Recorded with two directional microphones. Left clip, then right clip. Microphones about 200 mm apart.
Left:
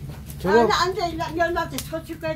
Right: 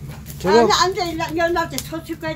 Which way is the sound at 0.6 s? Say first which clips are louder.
Right 4 dB; 35° right (ahead or behind).